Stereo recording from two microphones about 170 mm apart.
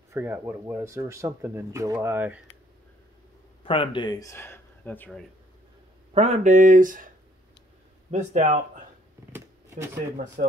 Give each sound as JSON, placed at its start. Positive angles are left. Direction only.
{"t": 0.1, "sound": "speech", "side_deg": -10}
{"t": 3.6, "sound": "speech", "side_deg": 30}
{"t": 6.1, "sound": "speech", "side_deg": -45}
{"t": 8.1, "sound": "speech", "side_deg": -45}
{"t": 9.3, "sound": "shuffling cards", "side_deg": -15}
{"t": 10.1, "sound": "speech", "side_deg": -50}